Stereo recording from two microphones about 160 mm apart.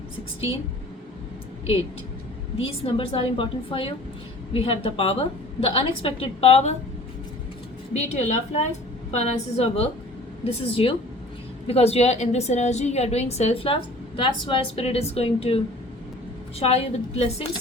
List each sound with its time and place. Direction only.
2.6 s a woman's voice: 35° left (ahead or behind)
7.9 s a woman's voice: 45° left (ahead or behind)